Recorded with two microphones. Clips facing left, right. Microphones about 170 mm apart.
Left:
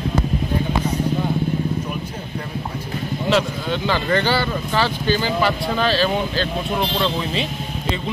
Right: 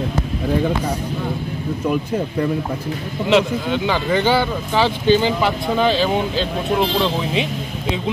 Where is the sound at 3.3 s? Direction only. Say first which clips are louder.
Right 4 dB; 15° right (ahead or behind).